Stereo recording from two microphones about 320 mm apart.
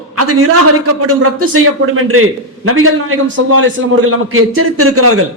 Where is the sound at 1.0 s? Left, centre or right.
Right.